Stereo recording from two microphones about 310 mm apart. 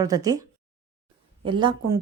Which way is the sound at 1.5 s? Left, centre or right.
Centre.